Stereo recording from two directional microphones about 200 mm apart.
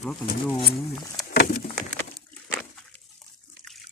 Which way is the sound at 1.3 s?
50° left (ahead or behind).